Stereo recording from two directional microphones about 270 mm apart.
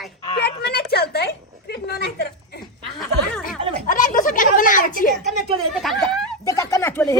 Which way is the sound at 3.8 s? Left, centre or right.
Left.